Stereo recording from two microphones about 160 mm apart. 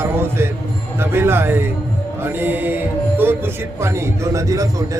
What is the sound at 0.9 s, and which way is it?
A man's voice, 15° right (ahead or behind).